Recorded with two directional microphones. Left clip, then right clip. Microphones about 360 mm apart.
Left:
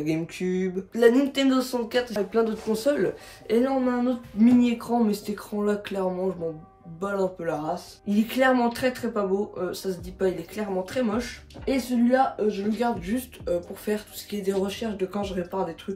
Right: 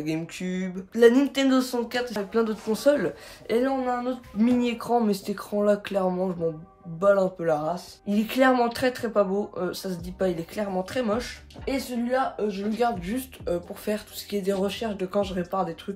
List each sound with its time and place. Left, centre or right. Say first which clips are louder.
0.0 s speech: left 3 dB; centre
12.7 s speech: right 1 dB; centre